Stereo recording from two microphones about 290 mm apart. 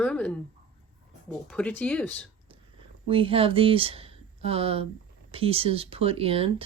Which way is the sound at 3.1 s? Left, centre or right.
Centre.